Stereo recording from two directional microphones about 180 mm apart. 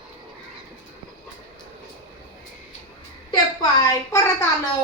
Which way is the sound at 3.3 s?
20° left (ahead or behind).